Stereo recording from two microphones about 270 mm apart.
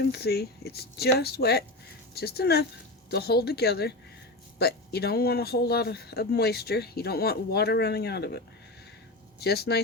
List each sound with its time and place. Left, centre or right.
0.0 s speech: left